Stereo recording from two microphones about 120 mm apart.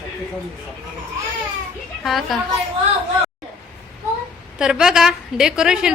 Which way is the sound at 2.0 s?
Centre (ahead or behind).